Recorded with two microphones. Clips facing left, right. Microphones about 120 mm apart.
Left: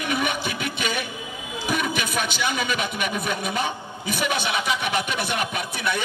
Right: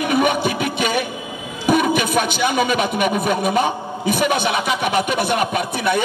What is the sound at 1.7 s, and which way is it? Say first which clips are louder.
A man's voice: right 10 dB; 50° right (ahead or behind).